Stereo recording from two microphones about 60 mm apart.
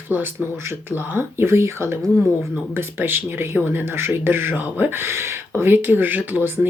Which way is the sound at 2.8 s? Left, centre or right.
Right.